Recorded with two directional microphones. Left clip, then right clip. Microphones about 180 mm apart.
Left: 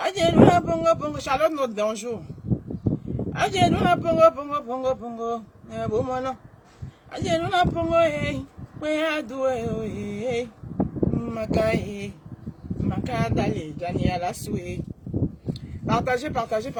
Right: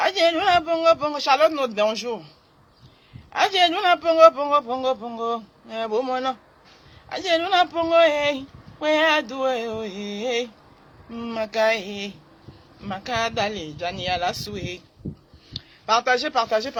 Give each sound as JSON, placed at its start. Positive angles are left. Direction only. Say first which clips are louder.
{"t": 0.0, "sound": "speech", "louder": "left 1 dB", "side_deg": 15}
{"t": 3.3, "sound": "speech", "louder": "right 3 dB", "side_deg": 15}
{"t": 15.9, "sound": "speech", "louder": "right 4 dB", "side_deg": 15}